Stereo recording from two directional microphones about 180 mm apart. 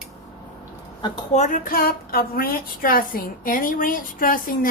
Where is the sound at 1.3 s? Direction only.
45° left (ahead or behind).